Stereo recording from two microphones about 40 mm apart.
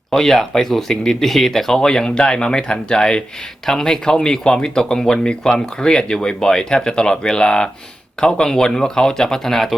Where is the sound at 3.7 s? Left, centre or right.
Centre.